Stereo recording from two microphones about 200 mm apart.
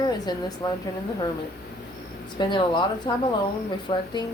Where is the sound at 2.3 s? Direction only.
25° left (ahead or behind).